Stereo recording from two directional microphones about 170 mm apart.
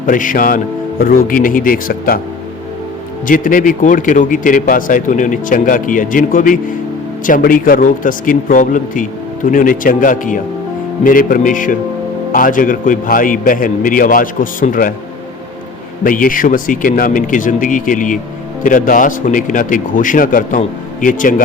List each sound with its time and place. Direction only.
0.0 s a man's voice: 50° left (ahead or behind)
3.2 s a man's voice: 50° left (ahead or behind)
16.0 s a man's voice: 55° left (ahead or behind)